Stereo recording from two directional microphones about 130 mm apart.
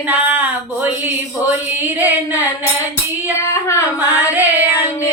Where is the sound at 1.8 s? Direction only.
15° right (ahead or behind).